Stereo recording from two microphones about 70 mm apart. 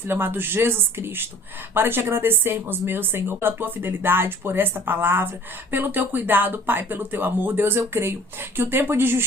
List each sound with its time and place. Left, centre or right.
0.0 s speech: right